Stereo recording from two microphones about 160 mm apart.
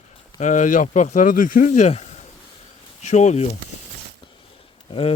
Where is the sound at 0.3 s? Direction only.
50° left (ahead or behind).